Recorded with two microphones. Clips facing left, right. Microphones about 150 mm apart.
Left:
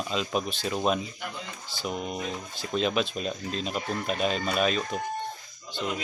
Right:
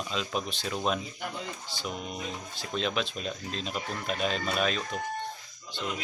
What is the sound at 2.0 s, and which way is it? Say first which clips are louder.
Music: left 5 dB; 45° left (ahead or behind).